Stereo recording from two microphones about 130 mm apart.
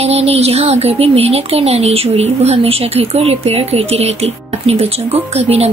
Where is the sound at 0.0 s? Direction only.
50° right (ahead or behind).